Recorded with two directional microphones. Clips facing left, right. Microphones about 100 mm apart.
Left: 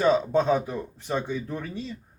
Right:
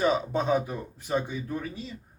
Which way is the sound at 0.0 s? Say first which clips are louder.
Left 4 dB; 10° right (ahead or behind).